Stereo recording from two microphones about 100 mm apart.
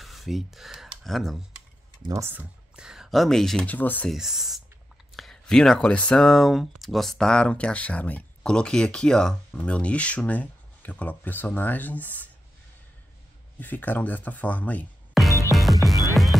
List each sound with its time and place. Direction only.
0.0 s speech: centre (ahead or behind)
2.7 s speech: 5° right (ahead or behind)
3.7 s speech: 20° left (ahead or behind)
4.1 s speech: 5° right (ahead or behind); by 12.3 s 15° left (ahead or behind)
13.6 s speech: 15° left (ahead or behind)
15.2 s music: centre (ahead or behind)